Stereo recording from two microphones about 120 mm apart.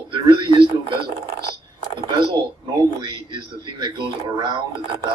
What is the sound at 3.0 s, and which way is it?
A man's voice, 45° right (ahead or behind).